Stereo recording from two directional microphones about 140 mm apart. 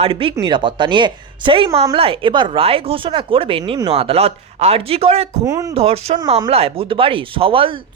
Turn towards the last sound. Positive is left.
turn(degrees=-40)  # may be behind; listen again after turning